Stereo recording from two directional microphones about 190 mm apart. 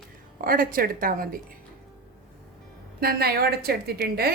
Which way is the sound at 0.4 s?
50° right (ahead or behind).